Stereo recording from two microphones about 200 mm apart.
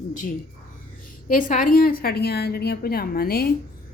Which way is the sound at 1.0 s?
45° left (ahead or behind).